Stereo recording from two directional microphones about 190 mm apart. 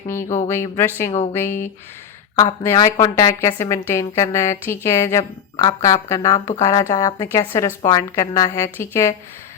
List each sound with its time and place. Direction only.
0.4 s a woman's voice: 15° left (ahead or behind)